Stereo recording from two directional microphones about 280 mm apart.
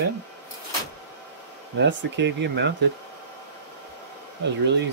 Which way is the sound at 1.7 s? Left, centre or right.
Right.